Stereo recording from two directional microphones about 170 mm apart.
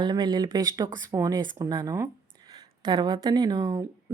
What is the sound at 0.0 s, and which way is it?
A woman's voice, 25° right (ahead or behind).